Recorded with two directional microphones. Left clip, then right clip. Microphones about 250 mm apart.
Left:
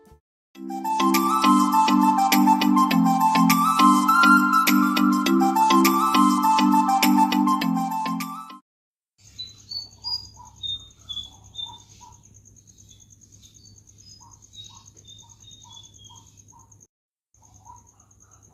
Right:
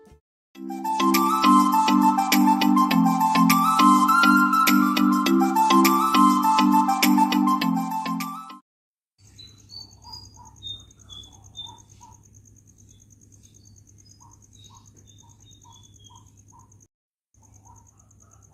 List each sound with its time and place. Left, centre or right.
0.5 s music: centre